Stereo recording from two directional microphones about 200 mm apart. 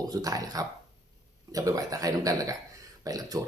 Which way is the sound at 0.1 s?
20° right (ahead or behind).